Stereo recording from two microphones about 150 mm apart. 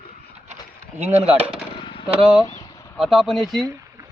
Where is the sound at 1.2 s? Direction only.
5° right (ahead or behind).